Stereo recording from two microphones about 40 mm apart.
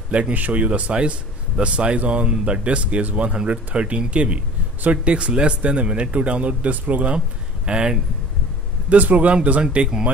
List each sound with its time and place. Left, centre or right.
0.3 s speech: right
7.6 s speech: right
8.8 s speech: right
9.3 s speech: right